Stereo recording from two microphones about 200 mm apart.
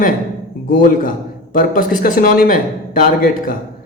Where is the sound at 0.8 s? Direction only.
45° left (ahead or behind).